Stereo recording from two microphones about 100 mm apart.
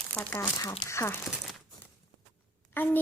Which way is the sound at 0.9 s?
30° left (ahead or behind).